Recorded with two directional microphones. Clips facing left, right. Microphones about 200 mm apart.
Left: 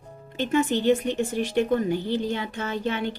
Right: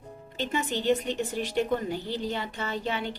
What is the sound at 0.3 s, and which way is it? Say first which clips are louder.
Speech: left 7 dB; 50° left (ahead or behind).